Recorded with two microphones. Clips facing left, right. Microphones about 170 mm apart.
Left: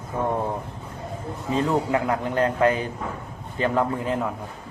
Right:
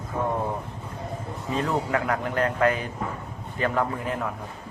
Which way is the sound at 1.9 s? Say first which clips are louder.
Left 2 dB; 20° left (ahead or behind).